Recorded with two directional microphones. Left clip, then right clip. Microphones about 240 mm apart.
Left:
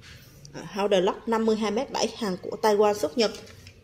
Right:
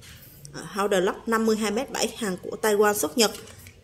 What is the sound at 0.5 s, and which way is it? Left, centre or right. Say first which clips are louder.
A woman's voice: even; centre.